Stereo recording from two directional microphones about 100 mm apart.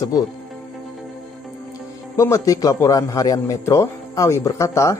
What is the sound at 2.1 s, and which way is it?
A man's voice, 30° left (ahead or behind).